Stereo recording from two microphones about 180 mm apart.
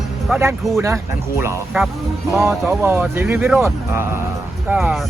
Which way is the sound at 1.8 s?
10° right (ahead or behind).